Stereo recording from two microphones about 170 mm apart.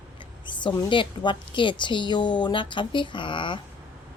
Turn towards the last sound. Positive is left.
turn(degrees=30)  # may be behind; listen again after turning